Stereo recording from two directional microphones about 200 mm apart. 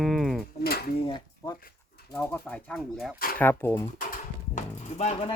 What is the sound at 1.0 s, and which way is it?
Speech, 20° left (ahead or behind).